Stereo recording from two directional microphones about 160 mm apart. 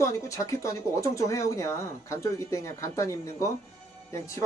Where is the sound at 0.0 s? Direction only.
20° left (ahead or behind).